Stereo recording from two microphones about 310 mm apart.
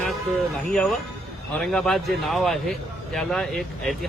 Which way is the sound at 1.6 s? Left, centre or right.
Centre.